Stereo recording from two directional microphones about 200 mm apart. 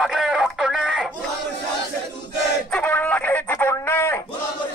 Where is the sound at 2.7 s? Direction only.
10° left (ahead or behind).